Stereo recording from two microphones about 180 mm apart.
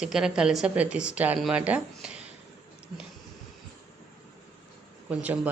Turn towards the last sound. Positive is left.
turn(degrees=-10)  # may be behind; listen again after turning